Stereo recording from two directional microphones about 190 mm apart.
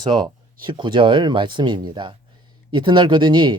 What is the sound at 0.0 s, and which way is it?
Speech, 25° right (ahead or behind).